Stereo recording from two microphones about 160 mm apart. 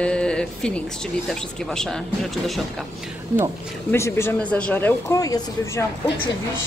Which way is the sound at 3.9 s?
15° left (ahead or behind).